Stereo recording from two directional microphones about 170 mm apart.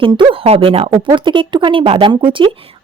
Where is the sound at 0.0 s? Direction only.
30° right (ahead or behind).